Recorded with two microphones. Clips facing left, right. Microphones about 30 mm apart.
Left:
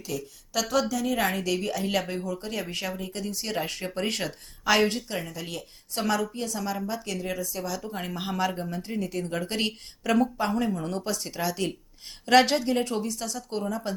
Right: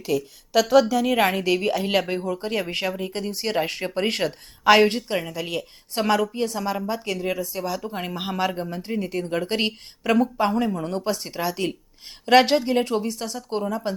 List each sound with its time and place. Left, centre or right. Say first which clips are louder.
0.0 s a woman's voice: right 9 dB; right